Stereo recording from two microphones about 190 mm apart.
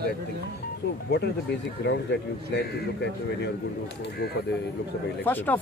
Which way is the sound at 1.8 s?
65° left (ahead or behind).